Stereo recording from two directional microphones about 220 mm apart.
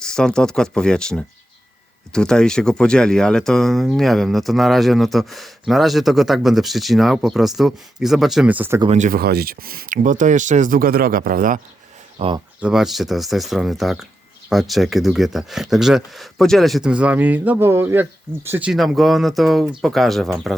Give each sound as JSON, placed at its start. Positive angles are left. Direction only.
{"t": 0.0, "sound": "speech", "side_deg": 5}
{"t": 8.8, "sound": "speech", "side_deg": -30}
{"t": 12.2, "sound": "speech", "side_deg": -25}
{"t": 12.5, "sound": "speech", "side_deg": -5}